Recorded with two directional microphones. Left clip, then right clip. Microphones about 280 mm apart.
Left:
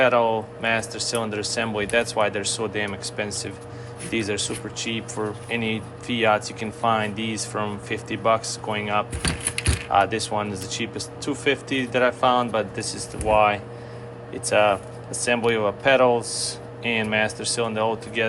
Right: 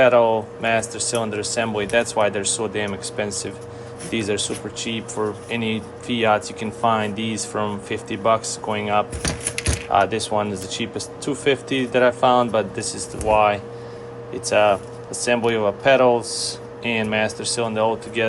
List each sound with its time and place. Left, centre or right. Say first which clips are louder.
0.0 s speech: right 4 dB; centre
9.2 s keys jangling: right 1 dB; centre
9.9 s speech: right 2 dB; centre